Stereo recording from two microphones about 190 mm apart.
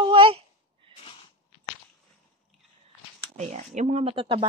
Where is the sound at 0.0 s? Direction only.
25° right (ahead or behind).